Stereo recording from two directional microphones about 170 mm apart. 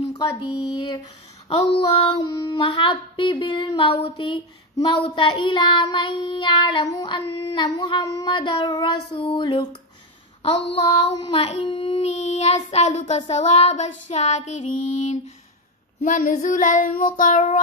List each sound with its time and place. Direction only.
0.1 s a sound: 25° left (ahead or behind)
10.4 s child singing: 35° left (ahead or behind)
16.0 s child singing: 50° left (ahead or behind)